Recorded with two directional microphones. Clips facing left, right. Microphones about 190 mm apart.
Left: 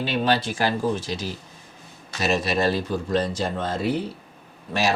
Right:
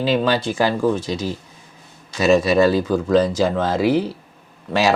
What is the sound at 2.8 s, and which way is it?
Speech, 90° right.